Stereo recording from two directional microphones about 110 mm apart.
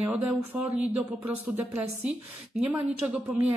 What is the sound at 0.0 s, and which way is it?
Speech, 10° right (ahead or behind).